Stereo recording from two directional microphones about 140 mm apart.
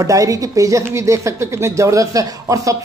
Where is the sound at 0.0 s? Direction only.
25° right (ahead or behind).